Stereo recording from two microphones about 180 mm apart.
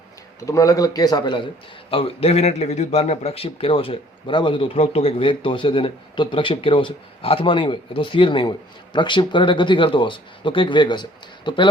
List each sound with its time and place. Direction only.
0.3 s speech: 20° left (ahead or behind)